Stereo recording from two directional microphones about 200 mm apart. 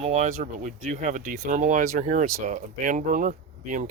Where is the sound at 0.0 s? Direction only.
35° right (ahead or behind).